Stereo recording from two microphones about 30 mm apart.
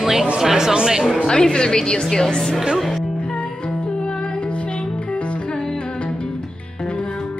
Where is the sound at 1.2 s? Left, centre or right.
Left.